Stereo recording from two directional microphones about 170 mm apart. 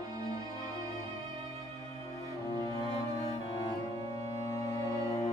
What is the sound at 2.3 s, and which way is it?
Cello, 20° left (ahead or behind).